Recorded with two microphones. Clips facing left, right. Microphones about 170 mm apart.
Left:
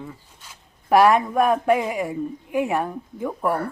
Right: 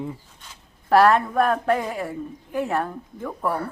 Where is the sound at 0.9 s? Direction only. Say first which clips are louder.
Left 1 dB; 10° left (ahead or behind).